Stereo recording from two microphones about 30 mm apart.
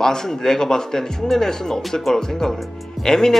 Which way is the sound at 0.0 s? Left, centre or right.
Centre.